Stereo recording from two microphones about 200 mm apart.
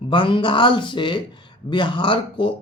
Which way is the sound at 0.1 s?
25° left (ahead or behind).